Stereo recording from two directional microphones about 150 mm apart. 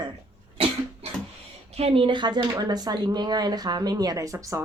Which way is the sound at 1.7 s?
40° right (ahead or behind).